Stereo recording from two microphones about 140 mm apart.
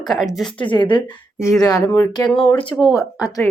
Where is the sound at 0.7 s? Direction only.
35° left (ahead or behind).